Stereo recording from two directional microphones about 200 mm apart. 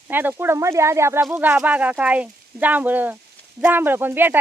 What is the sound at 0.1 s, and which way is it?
Speech, 10° right (ahead or behind).